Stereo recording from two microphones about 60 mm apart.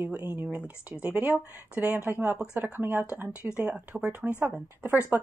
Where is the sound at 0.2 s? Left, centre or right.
Right.